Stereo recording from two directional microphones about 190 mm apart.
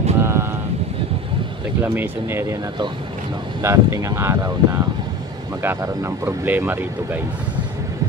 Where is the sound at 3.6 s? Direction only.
15° right (ahead or behind).